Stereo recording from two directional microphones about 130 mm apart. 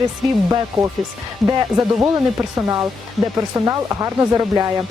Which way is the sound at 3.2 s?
25° right (ahead or behind).